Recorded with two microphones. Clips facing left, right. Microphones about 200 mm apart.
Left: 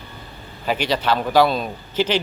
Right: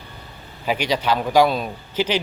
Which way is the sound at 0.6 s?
10° right (ahead or behind).